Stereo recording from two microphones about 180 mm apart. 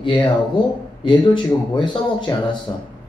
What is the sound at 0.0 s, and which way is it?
A man's voice, 25° left (ahead or behind).